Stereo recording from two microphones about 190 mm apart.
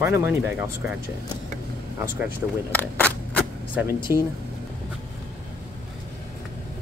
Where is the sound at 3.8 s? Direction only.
10° right (ahead or behind).